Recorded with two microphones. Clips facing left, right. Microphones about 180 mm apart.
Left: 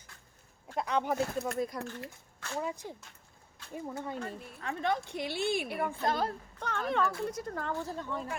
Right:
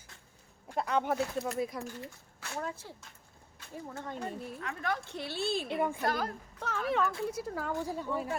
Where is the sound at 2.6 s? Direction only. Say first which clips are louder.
Left 3 dB; 15° left (ahead or behind).